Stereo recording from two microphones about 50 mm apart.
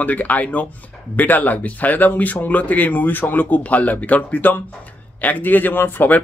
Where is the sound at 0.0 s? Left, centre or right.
Left.